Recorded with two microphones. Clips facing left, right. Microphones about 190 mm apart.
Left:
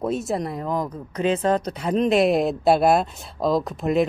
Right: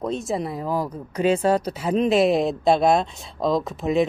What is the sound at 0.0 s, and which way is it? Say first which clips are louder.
Speech: left 1 dB; 5° left (ahead or behind).